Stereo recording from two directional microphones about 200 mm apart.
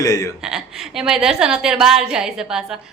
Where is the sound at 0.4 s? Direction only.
5° right (ahead or behind).